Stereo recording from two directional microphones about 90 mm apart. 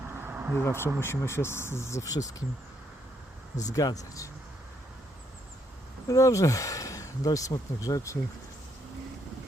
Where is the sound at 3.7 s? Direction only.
40° left (ahead or behind).